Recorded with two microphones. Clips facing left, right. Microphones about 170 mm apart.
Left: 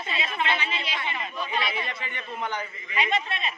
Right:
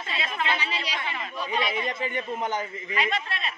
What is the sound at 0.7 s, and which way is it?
Speech, 40° right (ahead or behind).